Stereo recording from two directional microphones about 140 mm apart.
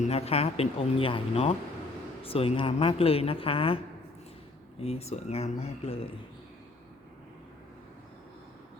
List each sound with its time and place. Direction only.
0.0 s speech: 45° left (ahead or behind)
4.8 s speech: 45° left (ahead or behind)